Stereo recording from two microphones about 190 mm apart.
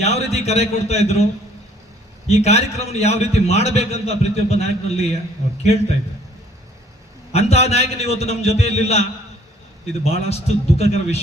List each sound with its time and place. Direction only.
0.0 s a man's voice: 35° left (ahead or behind)
2.2 s a man's voice: 35° left (ahead or behind)
7.3 s a man's voice: 35° left (ahead or behind)